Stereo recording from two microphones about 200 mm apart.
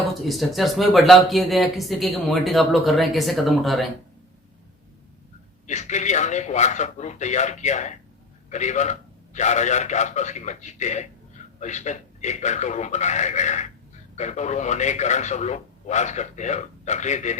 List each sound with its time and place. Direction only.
0.1 s speech: centre (ahead or behind)
5.6 s a man's voice: 35° left (ahead or behind)